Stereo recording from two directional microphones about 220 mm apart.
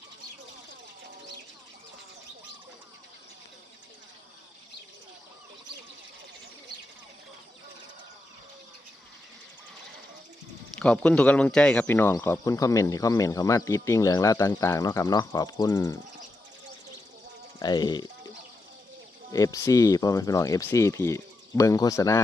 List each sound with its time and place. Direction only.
10.8 s speech: 5° left (ahead or behind)
17.6 s speech: 20° left (ahead or behind)
19.3 s speech: 15° left (ahead or behind)